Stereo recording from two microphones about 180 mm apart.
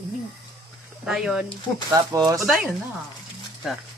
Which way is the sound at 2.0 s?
20° right (ahead or behind).